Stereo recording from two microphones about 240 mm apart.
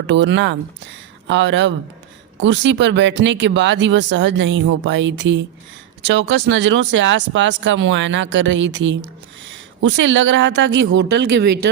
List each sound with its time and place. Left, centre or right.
0.1 s speech: right